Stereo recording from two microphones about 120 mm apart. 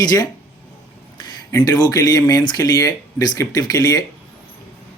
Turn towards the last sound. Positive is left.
turn(degrees=30)  # may be behind; listen again after turning